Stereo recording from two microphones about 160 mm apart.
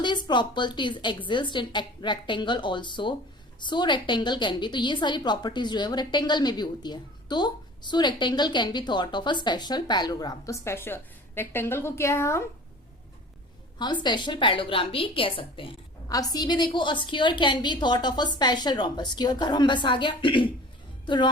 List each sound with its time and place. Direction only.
0.3 s a woman's voice: 30° left (ahead or behind)
13.7 s a woman's voice: 30° left (ahead or behind)